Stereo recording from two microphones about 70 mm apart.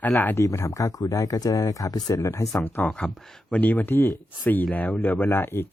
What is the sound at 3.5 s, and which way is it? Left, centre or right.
Speech, left.